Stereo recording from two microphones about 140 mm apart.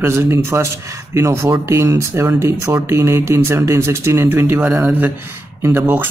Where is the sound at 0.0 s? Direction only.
20° right (ahead or behind).